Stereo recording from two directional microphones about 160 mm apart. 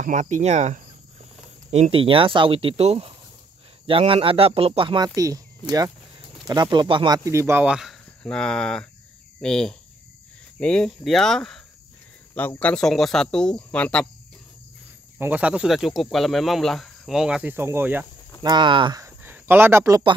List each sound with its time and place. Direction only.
0.0 s speech: 50° right (ahead or behind); by 7.2 s 30° right (ahead or behind)
7.2 s speech: 15° right (ahead or behind); by 14.0 s 5° left (ahead or behind)
15.1 s speech: 10° right (ahead or behind)
18.4 s speech: 30° right (ahead or behind)